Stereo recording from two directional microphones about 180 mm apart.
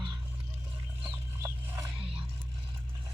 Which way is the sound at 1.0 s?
20° right (ahead or behind).